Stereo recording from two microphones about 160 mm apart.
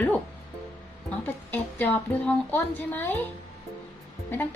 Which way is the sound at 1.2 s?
10° left (ahead or behind).